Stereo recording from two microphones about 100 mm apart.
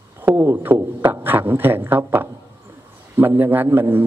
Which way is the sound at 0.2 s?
25° right (ahead or behind).